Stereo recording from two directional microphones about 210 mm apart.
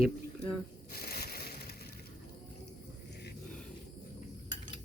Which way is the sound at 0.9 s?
45° left (ahead or behind).